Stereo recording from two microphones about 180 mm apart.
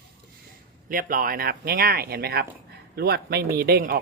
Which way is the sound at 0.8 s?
50° right (ahead or behind).